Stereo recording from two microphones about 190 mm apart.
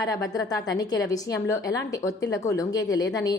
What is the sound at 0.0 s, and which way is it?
A woman's voice, 20° left (ahead or behind).